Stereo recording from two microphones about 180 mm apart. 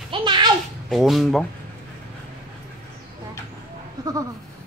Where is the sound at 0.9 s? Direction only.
Centre (ahead or behind).